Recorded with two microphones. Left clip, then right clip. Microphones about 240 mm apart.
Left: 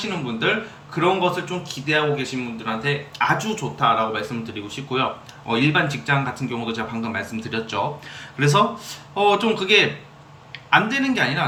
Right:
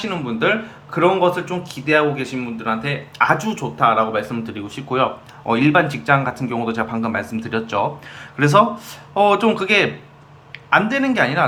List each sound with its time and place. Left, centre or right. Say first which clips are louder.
0.0 s speech: right 3 dB; centre